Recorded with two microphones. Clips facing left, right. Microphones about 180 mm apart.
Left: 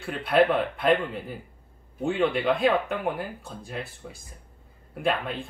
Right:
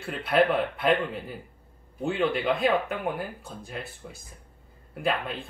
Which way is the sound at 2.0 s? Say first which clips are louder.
Left 2 dB; centre (ahead or behind).